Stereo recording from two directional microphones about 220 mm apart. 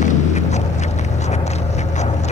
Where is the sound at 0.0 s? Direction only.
30° left (ahead or behind).